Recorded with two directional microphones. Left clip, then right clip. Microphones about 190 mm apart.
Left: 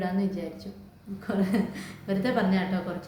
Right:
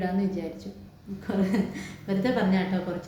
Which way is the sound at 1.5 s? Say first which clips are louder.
Even; 10° left (ahead or behind).